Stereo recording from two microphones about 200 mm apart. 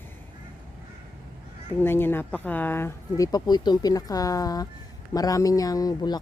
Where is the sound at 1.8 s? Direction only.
10° left (ahead or behind).